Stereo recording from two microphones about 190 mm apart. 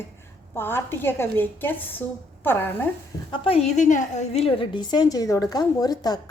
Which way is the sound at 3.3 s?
30° left (ahead or behind).